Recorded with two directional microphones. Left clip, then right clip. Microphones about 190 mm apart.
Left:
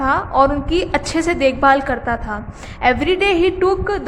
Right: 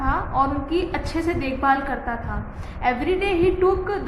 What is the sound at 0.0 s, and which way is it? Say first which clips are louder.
A woman's voice: left 7 dB; 50° left (ahead or behind).